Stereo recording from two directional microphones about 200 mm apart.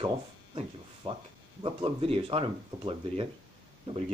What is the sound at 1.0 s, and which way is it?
Speech, 30° right (ahead or behind).